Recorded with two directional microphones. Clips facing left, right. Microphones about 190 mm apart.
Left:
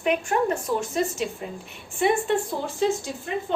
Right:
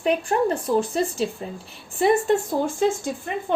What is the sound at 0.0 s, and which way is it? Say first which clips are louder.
A woman's voice: right 2 dB; 35° right (ahead or behind).